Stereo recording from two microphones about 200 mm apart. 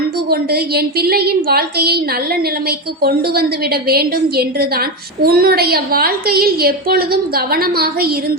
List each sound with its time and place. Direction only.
0.3 s a woman's voice: 50° right (ahead or behind)